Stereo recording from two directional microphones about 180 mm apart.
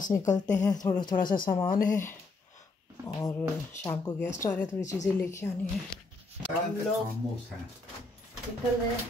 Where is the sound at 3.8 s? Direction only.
15° left (ahead or behind).